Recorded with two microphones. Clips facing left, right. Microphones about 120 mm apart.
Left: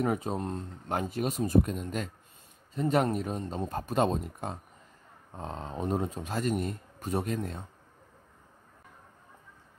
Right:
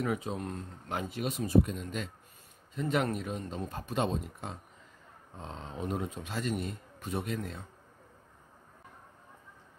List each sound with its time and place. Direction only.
0.0 s a man's voice: 40° left (ahead or behind)